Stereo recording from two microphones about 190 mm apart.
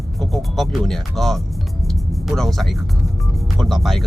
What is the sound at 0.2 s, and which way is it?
Speech, centre (ahead or behind).